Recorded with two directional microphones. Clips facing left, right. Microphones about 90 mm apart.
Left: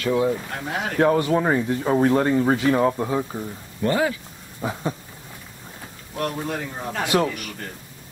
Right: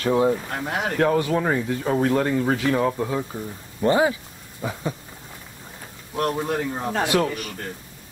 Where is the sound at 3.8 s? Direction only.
20° right (ahead or behind).